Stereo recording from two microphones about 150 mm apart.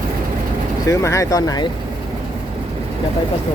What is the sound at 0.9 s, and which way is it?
Speech, 20° left (ahead or behind).